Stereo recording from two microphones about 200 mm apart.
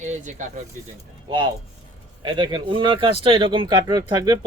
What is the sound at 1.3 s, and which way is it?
Speech, 25° right (ahead or behind).